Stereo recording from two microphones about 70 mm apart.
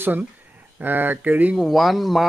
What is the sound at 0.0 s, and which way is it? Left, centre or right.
Speech, right.